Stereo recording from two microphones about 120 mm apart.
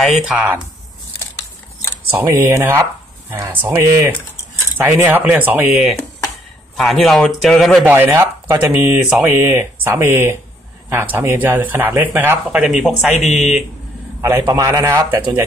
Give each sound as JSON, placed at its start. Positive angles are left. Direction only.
{"t": 0.0, "sound": "speech", "side_deg": -5}
{"t": 2.0, "sound": "speech", "side_deg": -15}
{"t": 6.8, "sound": "speech", "side_deg": 0}
{"t": 7.8, "sound": "speech", "side_deg": -15}
{"t": 12.5, "sound": "speech", "side_deg": -5}
{"t": 14.4, "sound": "speech", "side_deg": -25}